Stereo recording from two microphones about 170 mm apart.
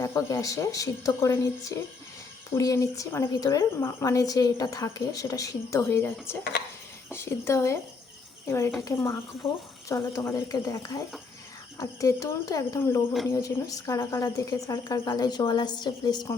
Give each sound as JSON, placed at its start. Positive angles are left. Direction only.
{"t": 0.0, "sound": "speech", "side_deg": 20}